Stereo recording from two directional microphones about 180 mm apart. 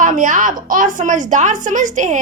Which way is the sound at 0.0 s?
45° right (ahead or behind).